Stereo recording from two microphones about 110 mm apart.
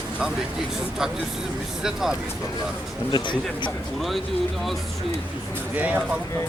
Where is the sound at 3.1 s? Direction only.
40° left (ahead or behind).